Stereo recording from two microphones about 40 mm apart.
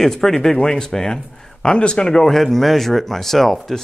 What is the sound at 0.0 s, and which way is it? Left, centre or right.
Speech, centre.